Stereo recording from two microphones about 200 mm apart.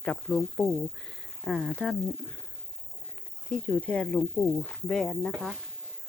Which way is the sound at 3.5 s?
5° left (ahead or behind).